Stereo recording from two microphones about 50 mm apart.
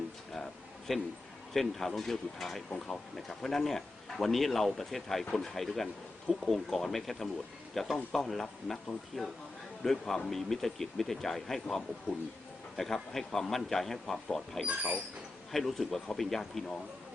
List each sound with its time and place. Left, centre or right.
0.3 s a sound: centre
1.5 s a man's voice: centre
14.7 s speech: right
15.5 s speech: centre